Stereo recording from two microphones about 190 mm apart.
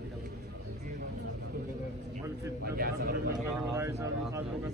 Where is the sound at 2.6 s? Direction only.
55° right (ahead or behind).